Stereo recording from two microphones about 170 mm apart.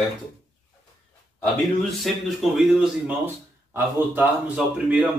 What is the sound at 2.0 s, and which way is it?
Speech, centre (ahead or behind).